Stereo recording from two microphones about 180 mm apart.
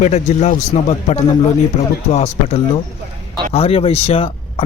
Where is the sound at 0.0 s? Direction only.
40° left (ahead or behind).